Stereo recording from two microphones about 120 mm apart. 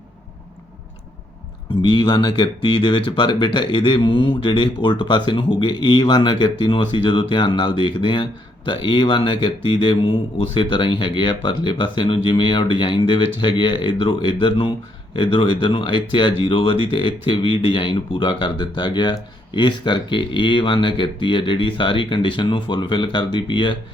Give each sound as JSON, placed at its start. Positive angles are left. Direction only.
{"t": 1.8, "sound": "speech", "side_deg": 40}